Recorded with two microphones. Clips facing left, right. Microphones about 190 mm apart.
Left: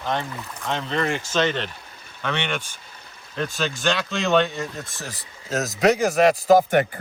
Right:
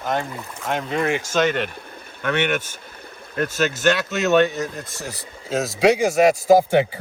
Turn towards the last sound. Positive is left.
turn(degrees=-10)  # may be behind; listen again after turning